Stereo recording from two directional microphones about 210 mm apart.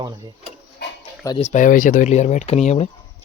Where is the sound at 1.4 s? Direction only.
35° left (ahead or behind).